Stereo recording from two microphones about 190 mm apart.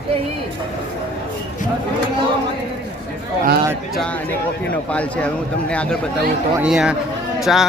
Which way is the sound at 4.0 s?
5° left (ahead or behind).